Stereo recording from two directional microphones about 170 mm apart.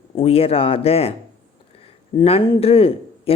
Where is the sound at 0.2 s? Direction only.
35° left (ahead or behind).